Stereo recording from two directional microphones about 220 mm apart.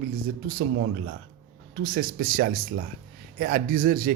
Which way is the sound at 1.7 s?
40° right (ahead or behind).